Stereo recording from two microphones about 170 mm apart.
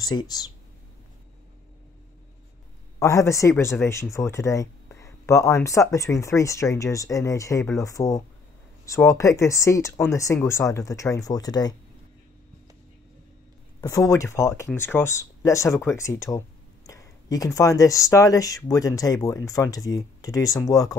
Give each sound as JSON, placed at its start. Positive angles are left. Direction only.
{"t": 0.0, "sound": "speech", "side_deg": 25}
{"t": 3.0, "sound": "speech", "side_deg": 15}
{"t": 13.7, "sound": "speech", "side_deg": 20}